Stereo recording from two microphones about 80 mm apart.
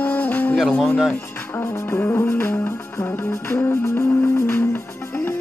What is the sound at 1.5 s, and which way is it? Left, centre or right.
Music, left.